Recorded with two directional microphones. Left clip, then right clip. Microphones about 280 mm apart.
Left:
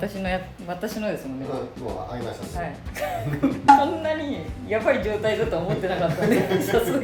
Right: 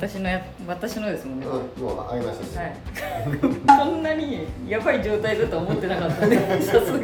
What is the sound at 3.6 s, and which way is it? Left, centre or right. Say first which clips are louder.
Speech: even; centre.